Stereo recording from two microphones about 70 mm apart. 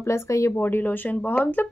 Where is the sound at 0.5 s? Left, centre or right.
Left.